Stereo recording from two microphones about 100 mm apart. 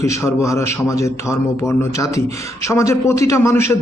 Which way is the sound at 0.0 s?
30° left (ahead or behind).